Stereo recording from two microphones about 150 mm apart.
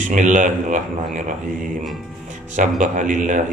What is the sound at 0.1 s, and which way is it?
Speech, 55° right (ahead or behind).